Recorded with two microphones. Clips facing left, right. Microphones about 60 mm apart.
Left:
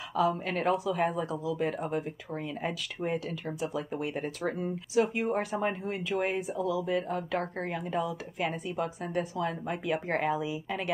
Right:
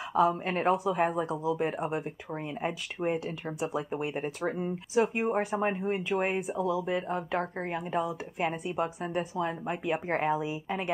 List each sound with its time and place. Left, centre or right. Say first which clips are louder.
0.1 s speech: right 2 dB; right
2.3 s speech: right 1 dB; right
5.8 s speech: right 4 dB; right
6.0 s speech: left 3 dB; right